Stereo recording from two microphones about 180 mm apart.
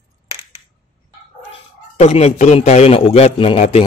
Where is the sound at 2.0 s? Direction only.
35° left (ahead or behind).